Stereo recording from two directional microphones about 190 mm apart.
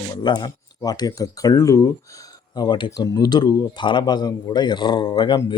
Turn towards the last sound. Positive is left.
turn(degrees=25)  # may be behind; listen again after turning